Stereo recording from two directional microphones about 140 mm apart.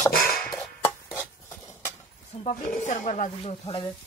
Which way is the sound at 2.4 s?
60° left (ahead or behind).